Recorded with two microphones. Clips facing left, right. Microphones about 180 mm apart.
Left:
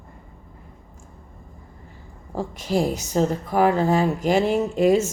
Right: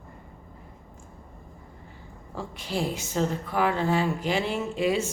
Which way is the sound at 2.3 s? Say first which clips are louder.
Left 7 dB; 40° left (ahead or behind).